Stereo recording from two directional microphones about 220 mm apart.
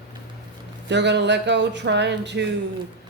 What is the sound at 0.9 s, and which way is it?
Speech, 50° right (ahead or behind).